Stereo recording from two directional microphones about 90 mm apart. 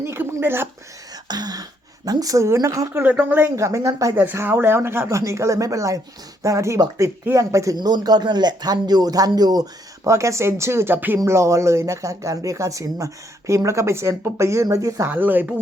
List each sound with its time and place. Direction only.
0.0 s speech: 30° right (ahead or behind)
1.3 s speech: 50° right (ahead or behind)
2.9 s speech: 20° right (ahead or behind)
3.5 s speech: 35° right (ahead or behind)
4.1 s speech: 25° right (ahead or behind)
7.8 s speech: 50° right (ahead or behind)
10.0 s speech: 35° right (ahead or behind)
11.2 s speech: 35° right (ahead or behind)
15.0 s speech: 20° right (ahead or behind)